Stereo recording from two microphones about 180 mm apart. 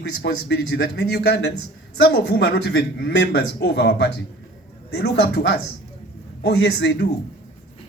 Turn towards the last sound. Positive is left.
turn(degrees=65)  # may be behind; listen again after turning